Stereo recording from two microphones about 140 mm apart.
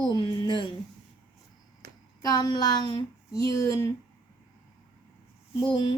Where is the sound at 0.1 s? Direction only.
30° left (ahead or behind).